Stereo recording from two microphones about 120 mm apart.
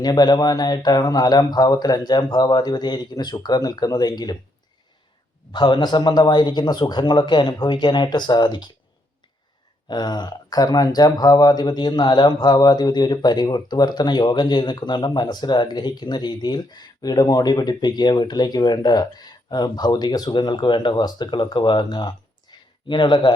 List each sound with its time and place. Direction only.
0.0 s speech: 35° left (ahead or behind)
5.5 s speech: 40° left (ahead or behind)
9.9 s speech: 35° left (ahead or behind)